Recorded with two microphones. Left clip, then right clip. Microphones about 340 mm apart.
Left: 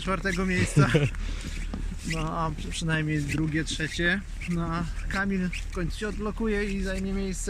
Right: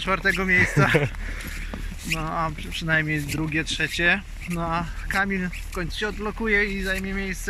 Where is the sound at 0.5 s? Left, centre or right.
Right.